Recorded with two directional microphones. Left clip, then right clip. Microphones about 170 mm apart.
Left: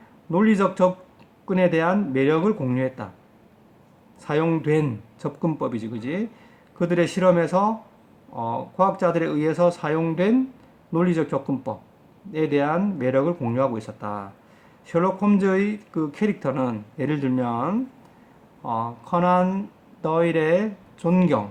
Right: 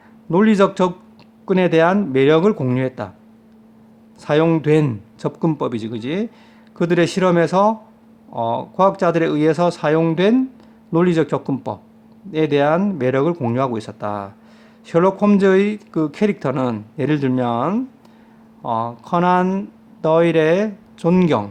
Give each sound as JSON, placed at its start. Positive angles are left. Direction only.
{"t": 0.3, "sound": "speech", "side_deg": -50}
{"t": 4.2, "sound": "speech", "side_deg": -50}